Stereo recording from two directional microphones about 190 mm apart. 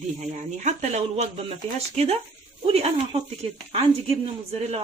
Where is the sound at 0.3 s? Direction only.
40° right (ahead or behind).